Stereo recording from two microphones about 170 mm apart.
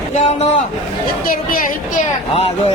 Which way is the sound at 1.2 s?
55° left (ahead or behind).